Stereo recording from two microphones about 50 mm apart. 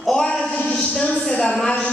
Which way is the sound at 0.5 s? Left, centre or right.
Centre.